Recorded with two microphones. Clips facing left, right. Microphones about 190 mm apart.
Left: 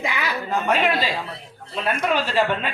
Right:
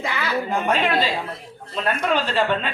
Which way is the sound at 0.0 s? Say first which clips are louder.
Even; 15° left (ahead or behind).